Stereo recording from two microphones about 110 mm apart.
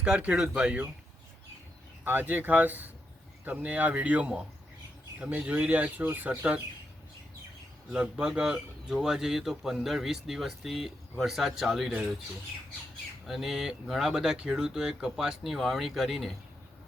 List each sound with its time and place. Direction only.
0.0 s speech: 10° right (ahead or behind)
2.0 s speech: 15° right (ahead or behind)
7.9 s speech: 10° right (ahead or behind)
13.2 s speech: centre (ahead or behind)